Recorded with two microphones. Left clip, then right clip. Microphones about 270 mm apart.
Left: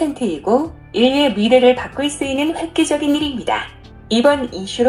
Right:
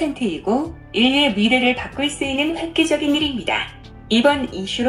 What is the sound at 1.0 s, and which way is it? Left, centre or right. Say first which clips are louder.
Speech: left 2 dB; right.